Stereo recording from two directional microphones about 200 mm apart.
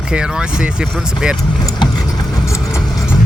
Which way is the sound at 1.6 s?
20° left (ahead or behind).